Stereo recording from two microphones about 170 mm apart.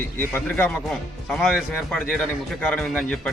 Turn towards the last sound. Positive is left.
turn(degrees=5)  # may be behind; listen again after turning